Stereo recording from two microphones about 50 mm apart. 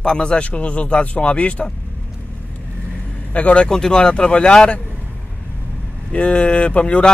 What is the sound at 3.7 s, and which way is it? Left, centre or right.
Speech, centre.